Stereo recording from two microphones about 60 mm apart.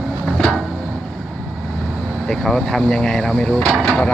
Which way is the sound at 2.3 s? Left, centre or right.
Centre.